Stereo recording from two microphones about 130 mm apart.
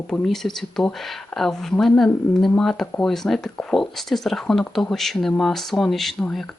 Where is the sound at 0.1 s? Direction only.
5° left (ahead or behind).